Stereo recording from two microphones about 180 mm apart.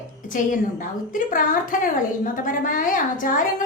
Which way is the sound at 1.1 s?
50° left (ahead or behind).